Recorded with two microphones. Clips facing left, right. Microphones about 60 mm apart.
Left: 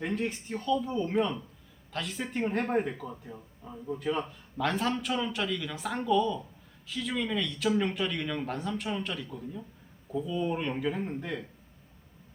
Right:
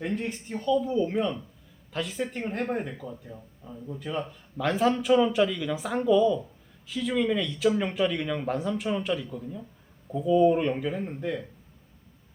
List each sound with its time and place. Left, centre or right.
0.0 s speech: centre
3.0 s speech: centre
4.0 s speech: centre